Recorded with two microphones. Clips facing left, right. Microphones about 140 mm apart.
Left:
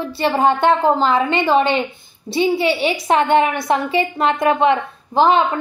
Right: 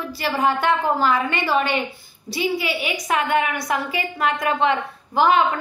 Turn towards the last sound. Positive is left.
turn(degrees=25)  # may be behind; listen again after turning